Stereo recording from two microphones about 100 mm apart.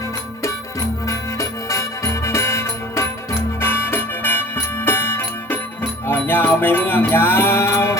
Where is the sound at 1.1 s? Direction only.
30° left (ahead or behind).